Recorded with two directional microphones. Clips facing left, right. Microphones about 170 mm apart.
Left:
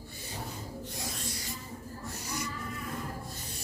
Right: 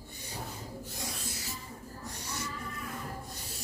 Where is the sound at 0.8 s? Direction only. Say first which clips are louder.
Left 1 dB; centre (ahead or behind).